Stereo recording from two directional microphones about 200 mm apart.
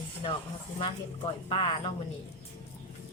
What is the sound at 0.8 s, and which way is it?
Speech, 25° left (ahead or behind).